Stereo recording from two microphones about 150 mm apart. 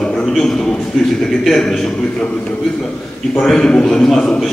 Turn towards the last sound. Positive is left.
turn(degrees=5)  # may be behind; listen again after turning